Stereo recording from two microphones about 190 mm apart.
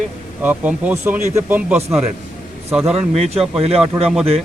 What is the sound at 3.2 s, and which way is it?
Speech, 30° right (ahead or behind).